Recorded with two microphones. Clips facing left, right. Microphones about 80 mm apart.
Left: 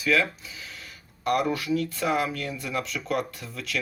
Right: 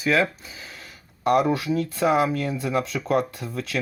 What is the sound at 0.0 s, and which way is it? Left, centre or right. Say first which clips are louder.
Speech: right 3 dB; right.